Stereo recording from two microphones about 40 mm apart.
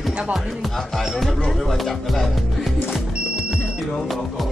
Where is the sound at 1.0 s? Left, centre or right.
Centre.